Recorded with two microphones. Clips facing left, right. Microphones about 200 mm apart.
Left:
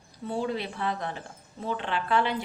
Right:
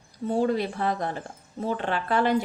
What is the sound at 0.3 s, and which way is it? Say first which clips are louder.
A woman's voice: right 6 dB; 45° right (ahead or behind).